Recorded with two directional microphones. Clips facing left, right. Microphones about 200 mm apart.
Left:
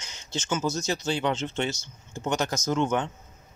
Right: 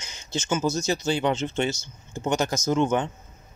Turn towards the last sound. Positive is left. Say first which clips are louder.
# right 3 dB
turn(degrees=-5)  # may be behind; listen again after turning